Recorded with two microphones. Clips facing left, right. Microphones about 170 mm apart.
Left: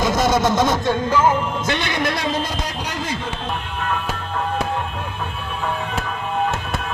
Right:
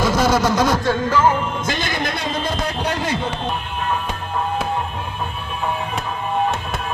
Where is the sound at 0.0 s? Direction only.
20° left (ahead or behind).